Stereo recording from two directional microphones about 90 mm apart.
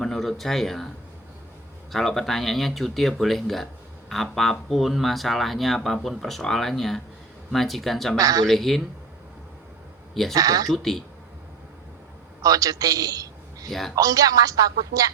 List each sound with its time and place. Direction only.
0.0 s speech: 5° left (ahead or behind)
1.9 s speech: 5° left (ahead or behind)
8.2 s speech: 45° right (ahead or behind)
8.4 s speech: centre (ahead or behind)
10.3 s speech: 45° right (ahead or behind)
10.7 s speech: 5° left (ahead or behind)
12.4 s a sound: 40° right (ahead or behind)
13.7 s speech: 5° left (ahead or behind)
13.9 s speech: 40° right (ahead or behind)